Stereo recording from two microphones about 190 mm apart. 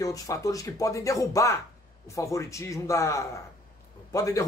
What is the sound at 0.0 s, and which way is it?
Speech, 15° left (ahead or behind).